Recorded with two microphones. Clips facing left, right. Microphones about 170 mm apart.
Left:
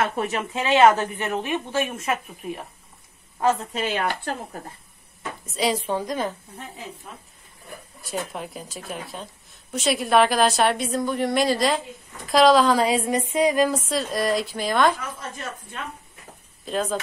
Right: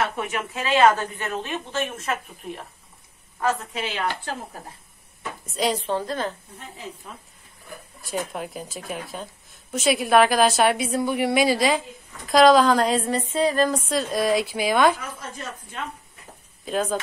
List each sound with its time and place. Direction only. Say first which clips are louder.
0.2 s speech: left 2 dB; 30° left (ahead or behind); by 2.6 s 10° left (ahead or behind)
3.8 s speech: left 3 dB; 50° left (ahead or behind)
5.5 s speech: even; centre (ahead or behind)
8.0 s speech: right 1 dB; centre (ahead or behind)
16.6 s speech: right 1 dB; centre (ahead or behind)